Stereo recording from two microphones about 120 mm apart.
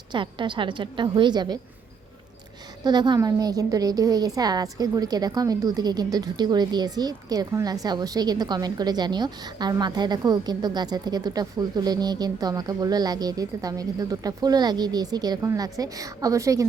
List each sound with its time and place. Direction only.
0.1 s a woman's voice: 40° right (ahead or behind)
2.8 s a woman's voice: 35° right (ahead or behind)